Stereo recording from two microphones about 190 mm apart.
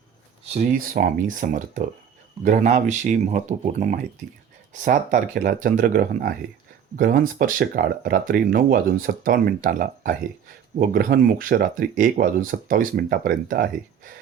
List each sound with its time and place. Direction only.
0.4 s speech: 35° right (ahead or behind)